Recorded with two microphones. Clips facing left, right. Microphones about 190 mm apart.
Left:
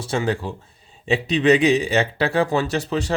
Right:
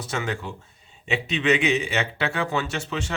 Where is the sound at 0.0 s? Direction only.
30° left (ahead or behind).